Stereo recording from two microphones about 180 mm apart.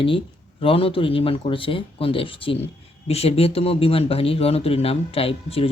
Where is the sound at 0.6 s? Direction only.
30° left (ahead or behind).